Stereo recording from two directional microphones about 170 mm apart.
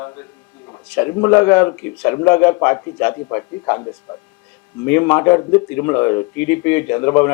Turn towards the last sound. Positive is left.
turn(degrees=15)  # may be behind; listen again after turning